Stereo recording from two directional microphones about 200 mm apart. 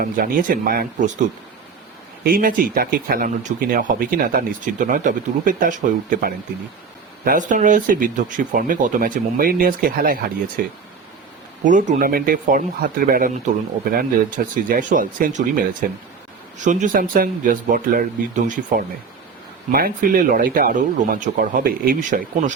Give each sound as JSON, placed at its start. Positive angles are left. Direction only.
{"t": 0.0, "sound": "speech", "side_deg": -45}
{"t": 2.2, "sound": "speech", "side_deg": -45}
{"t": 16.6, "sound": "speech", "side_deg": -40}
{"t": 19.7, "sound": "speech", "side_deg": -45}